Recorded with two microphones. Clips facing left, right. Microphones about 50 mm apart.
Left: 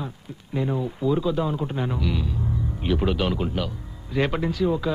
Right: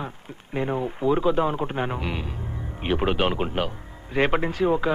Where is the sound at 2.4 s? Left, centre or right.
Right.